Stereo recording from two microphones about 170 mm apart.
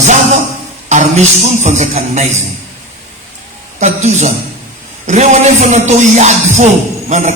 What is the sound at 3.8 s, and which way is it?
Speech, 40° right (ahead or behind).